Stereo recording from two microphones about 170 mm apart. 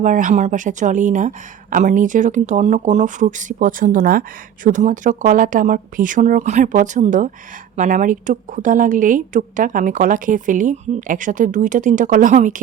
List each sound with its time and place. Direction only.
0.0 s speech: 50° right (ahead or behind)